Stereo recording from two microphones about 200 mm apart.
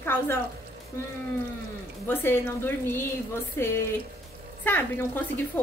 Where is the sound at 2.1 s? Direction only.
10° left (ahead or behind).